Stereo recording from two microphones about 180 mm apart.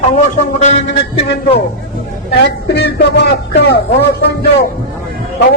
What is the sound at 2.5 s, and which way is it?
Speech, 70° left (ahead or behind).